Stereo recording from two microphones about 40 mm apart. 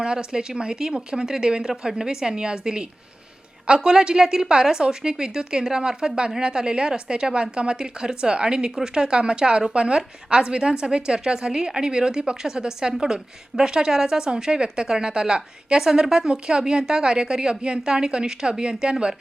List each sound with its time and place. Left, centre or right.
0.0 s a woman's voice: right